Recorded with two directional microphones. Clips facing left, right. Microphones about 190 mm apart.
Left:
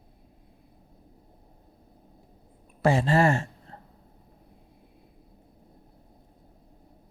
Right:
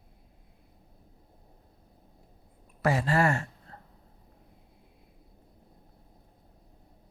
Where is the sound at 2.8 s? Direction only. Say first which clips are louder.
Left 4 dB; 25° left (ahead or behind).